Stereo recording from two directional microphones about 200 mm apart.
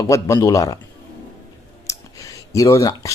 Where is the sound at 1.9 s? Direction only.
15° left (ahead or behind).